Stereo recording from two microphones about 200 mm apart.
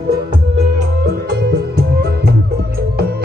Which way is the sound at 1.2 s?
55° right (ahead or behind).